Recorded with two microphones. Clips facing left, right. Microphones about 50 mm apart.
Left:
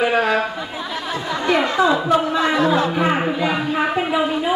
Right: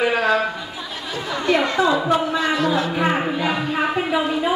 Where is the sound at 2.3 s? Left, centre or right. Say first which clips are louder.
Left 3 dB; left.